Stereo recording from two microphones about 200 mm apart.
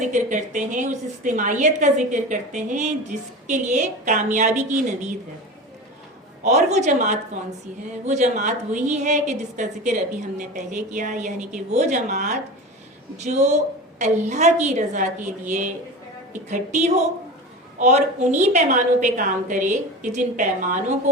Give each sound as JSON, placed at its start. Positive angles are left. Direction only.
{"t": 0.1, "sound": "a woman's voice", "side_deg": -40}
{"t": 6.4, "sound": "a woman's voice", "side_deg": -35}